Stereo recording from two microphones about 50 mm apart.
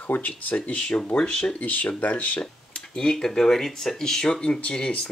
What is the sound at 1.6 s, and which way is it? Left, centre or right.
Speech, left.